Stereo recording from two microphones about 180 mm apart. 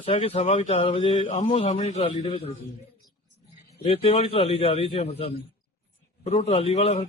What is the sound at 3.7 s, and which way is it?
Speech, 35° left (ahead or behind).